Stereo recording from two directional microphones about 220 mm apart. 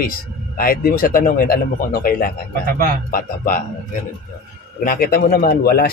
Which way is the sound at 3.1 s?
40° left (ahead or behind).